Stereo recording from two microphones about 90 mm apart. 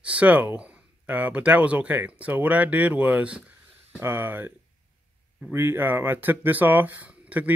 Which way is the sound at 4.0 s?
25° right (ahead or behind).